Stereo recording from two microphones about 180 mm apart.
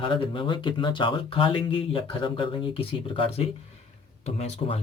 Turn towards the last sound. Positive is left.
turn(degrees=35)  # may be behind; listen again after turning